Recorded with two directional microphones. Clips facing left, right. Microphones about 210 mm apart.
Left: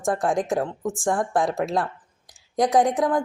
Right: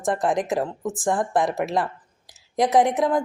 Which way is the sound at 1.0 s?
5° right (ahead or behind).